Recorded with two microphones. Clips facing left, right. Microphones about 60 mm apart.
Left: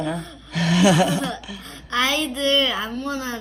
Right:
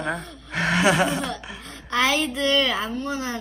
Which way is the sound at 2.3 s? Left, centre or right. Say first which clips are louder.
Left 1 dB; right.